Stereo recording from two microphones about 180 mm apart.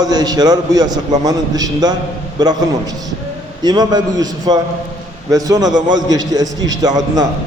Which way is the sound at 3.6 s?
25° right (ahead or behind).